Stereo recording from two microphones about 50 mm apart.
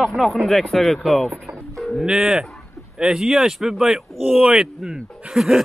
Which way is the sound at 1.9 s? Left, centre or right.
Centre.